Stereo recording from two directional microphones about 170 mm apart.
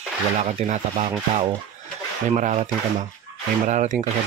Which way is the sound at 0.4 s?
45° right (ahead or behind).